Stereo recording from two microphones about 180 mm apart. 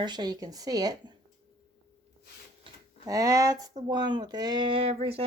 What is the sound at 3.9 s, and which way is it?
A woman's voice, 25° right (ahead or behind).